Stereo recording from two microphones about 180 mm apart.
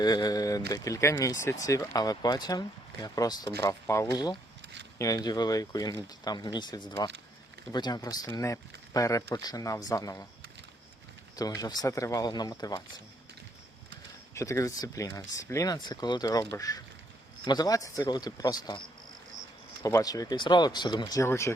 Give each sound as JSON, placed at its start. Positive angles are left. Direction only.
{"t": 0.0, "sound": "speech", "side_deg": 20}
{"t": 11.3, "sound": "speech", "side_deg": 20}
{"t": 14.3, "sound": "speech", "side_deg": 15}
{"t": 19.8, "sound": "speech", "side_deg": 20}